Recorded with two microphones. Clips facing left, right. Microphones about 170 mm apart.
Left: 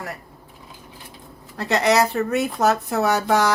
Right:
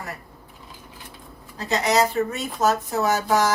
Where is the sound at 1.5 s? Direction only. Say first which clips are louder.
Left 3 dB; 65° left (ahead or behind).